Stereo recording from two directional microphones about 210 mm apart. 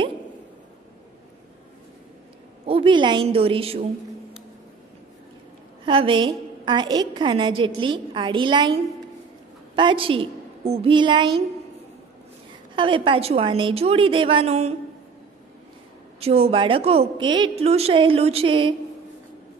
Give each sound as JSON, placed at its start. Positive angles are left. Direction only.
{"t": 2.6, "sound": "a woman's voice", "side_deg": -25}
{"t": 5.9, "sound": "a woman's voice", "side_deg": -25}
{"t": 9.8, "sound": "a woman's voice", "side_deg": -25}
{"t": 12.7, "sound": "a woman's voice", "side_deg": -25}
{"t": 16.2, "sound": "a woman's voice", "side_deg": -30}